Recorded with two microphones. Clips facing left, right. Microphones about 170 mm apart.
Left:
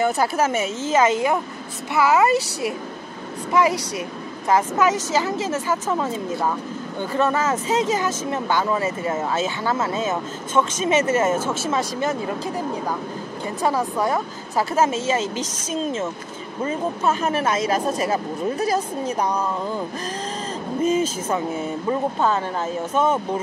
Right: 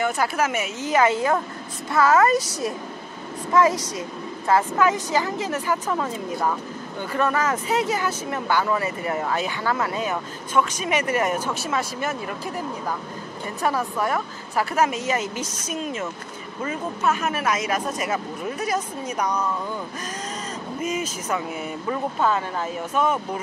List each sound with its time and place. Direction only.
0.0 s a woman's voice: 30° left (ahead or behind); by 2.2 s 10° left (ahead or behind)
3.5 s a woman's voice: 15° left (ahead or behind)
7.2 s speech: 25° left (ahead or behind)
13.6 s a woman's voice: 15° left (ahead or behind)
14.7 s speech: 25° left (ahead or behind)
20.8 s speech: 30° left (ahead or behind)
22.9 s speech: 25° left (ahead or behind)